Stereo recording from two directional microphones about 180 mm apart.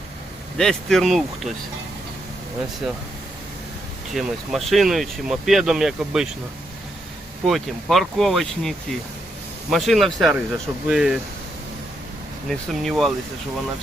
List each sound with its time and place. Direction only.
0.5 s speech: centre (ahead or behind)
4.1 s speech: centre (ahead or behind)
7.4 s speech: centre (ahead or behind)
12.5 s speech: centre (ahead or behind)